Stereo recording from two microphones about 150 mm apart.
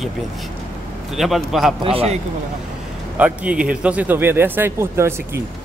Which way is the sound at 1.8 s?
40° right (ahead or behind).